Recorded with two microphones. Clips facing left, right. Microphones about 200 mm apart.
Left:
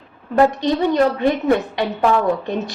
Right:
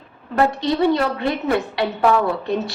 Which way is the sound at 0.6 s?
20° left (ahead or behind).